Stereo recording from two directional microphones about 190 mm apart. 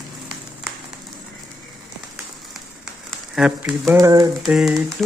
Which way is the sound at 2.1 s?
Centre (ahead or behind).